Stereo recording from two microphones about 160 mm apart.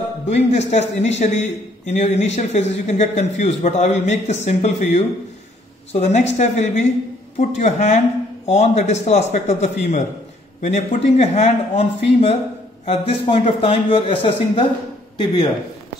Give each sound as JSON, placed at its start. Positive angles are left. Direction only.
{"t": 0.3, "sound": "a man's voice", "side_deg": 45}